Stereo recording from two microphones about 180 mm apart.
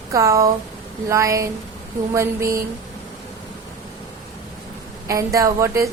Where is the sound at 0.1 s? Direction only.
20° right (ahead or behind).